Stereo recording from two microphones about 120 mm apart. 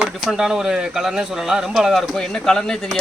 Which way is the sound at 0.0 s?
5° right (ahead or behind).